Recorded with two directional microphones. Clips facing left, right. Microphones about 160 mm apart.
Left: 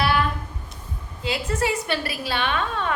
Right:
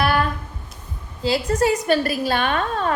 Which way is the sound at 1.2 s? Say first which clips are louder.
Right 6 dB; 35° right (ahead or behind).